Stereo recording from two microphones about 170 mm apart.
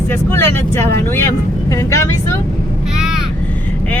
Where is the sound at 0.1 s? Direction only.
15° left (ahead or behind).